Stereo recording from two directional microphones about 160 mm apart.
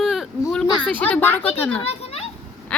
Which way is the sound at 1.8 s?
40° left (ahead or behind).